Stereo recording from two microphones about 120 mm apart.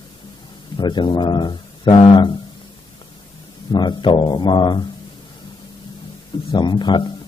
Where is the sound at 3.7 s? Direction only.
40° left (ahead or behind).